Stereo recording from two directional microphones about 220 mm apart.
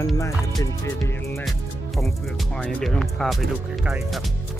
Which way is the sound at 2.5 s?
5° left (ahead or behind).